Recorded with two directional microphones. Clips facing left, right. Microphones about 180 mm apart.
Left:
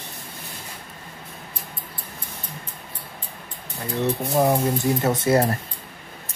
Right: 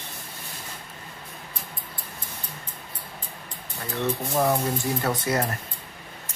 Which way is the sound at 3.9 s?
15° left (ahead or behind).